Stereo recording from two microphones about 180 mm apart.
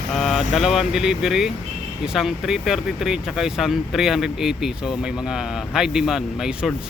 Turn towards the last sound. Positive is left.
turn(degrees=0)  # may be behind; listen again after turning